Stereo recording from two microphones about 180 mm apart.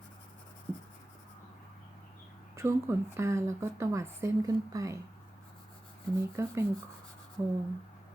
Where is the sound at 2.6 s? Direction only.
15° right (ahead or behind).